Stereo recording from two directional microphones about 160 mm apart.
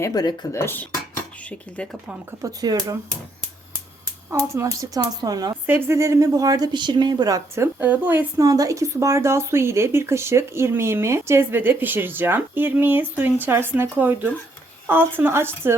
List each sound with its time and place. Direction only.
0.0 s dishes: 25° left (ahead or behind); by 2.0 s 5° left (ahead or behind)
2.4 s a woman's voice: 25° right (ahead or behind)
4.3 s a woman's voice: 20° right (ahead or behind)
5.6 s a woman's voice: 15° right (ahead or behind)
8.4 s a woman's voice: 20° right (ahead or behind)